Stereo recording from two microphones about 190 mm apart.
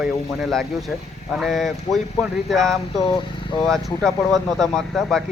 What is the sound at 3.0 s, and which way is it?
Speech, 25° left (ahead or behind).